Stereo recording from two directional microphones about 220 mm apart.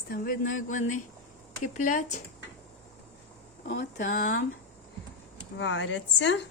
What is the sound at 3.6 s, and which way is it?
Speech, 35° left (ahead or behind).